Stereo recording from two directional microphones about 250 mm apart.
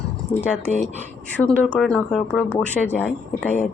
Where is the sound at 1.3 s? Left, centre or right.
Centre.